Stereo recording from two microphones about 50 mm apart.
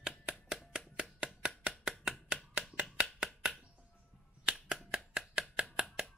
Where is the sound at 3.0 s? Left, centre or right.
Centre.